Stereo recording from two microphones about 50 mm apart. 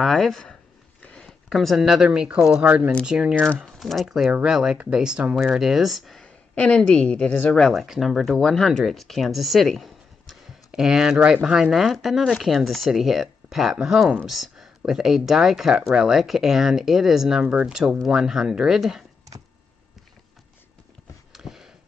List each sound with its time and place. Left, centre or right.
0.0 s speech: centre
1.0 s a sound: left
1.5 s speech: centre
1.8 s speech: centre
2.0 s speech: right
2.6 s speech: right
3.1 s speech: centre
3.5 s speech: centre
6.2 s a woman's voice: left
7.7 s speech: centre
8.5 s speech: centre
10.7 s speech: centre
21.3 s a sound: centre